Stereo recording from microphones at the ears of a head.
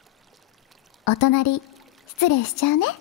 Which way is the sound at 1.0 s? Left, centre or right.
Left.